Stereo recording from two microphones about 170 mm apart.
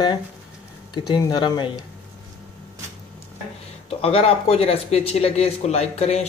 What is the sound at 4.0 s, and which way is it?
Speech, 35° left (ahead or behind).